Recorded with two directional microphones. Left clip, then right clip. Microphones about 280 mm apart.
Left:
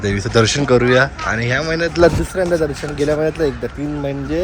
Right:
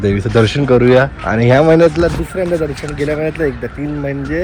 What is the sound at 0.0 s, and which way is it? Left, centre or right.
Speech, centre.